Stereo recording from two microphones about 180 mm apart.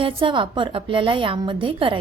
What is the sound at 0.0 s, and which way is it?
A woman's voice, 30° right (ahead or behind).